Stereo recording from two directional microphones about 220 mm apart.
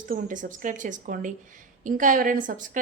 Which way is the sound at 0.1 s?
35° right (ahead or behind).